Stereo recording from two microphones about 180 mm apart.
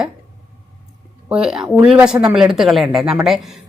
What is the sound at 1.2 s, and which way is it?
A woman's voice, 5° right (ahead or behind).